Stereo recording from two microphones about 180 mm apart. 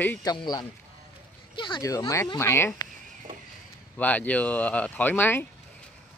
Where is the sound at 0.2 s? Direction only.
20° left (ahead or behind).